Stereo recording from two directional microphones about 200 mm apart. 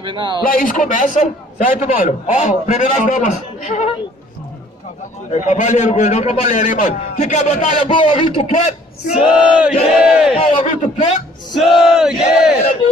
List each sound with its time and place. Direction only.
0.0 s a man's voice: 25° right (ahead or behind)
0.4 s a man's voice: 45° left (ahead or behind)
5.3 s a man's voice: 40° left (ahead or behind)
9.6 s battle cry: 5° right (ahead or behind)
10.3 s a man's voice: 35° left (ahead or behind)
11.5 s battle cry: centre (ahead or behind)